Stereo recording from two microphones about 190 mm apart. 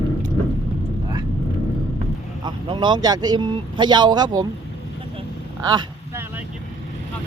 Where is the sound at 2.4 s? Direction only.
25° right (ahead or behind).